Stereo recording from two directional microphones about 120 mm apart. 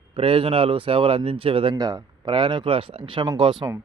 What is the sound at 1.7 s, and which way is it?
Speech, 30° right (ahead or behind).